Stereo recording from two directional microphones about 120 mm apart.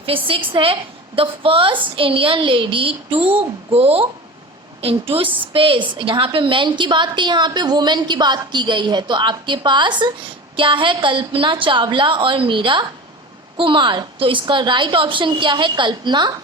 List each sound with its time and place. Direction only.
0.0 s a woman's voice: 50° right (ahead or behind)